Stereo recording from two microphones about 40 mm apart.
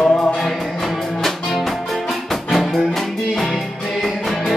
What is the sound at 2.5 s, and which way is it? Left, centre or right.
Music, centre.